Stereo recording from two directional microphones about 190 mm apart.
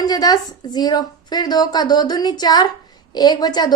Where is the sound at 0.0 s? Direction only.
20° left (ahead or behind).